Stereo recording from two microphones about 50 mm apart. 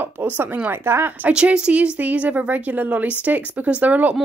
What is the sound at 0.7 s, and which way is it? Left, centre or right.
Speech, right.